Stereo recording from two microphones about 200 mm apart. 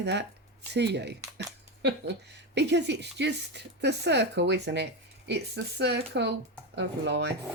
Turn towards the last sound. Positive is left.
turn(degrees=-55)  # may be behind; listen again after turning